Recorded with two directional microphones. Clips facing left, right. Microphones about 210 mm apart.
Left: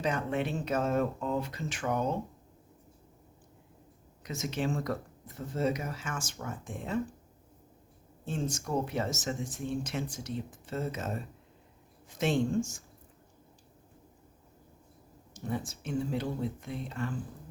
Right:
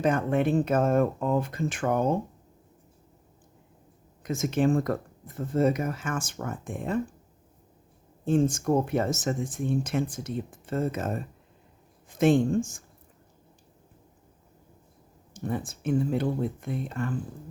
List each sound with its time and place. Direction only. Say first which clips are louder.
0.0 s speech: right 7 dB; 50° right (ahead or behind)
4.2 s speech: right 8 dB; 50° right (ahead or behind)
8.2 s speech: right 11 dB; 50° right (ahead or behind)
15.3 s speech: right 4 dB; 55° right (ahead or behind)